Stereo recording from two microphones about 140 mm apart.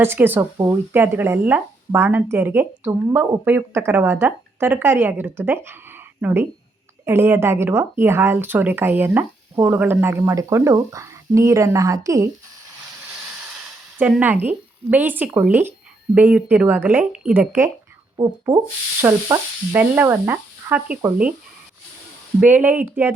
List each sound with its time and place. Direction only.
0.0 s speech: 15° right (ahead or behind)
13.5 s a sound: centre (ahead or behind)
14.2 s speech: 15° right (ahead or behind)
22.4 s speech: 10° right (ahead or behind)